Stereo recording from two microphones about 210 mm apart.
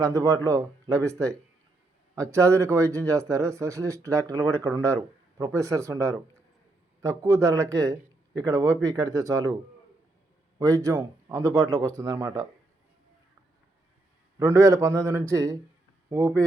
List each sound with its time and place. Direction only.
0.0 s speech: 15° right (ahead or behind)
7.2 s speech: 15° right (ahead or behind)
10.6 s speech: 15° right (ahead or behind)
14.3 s speech: 15° right (ahead or behind)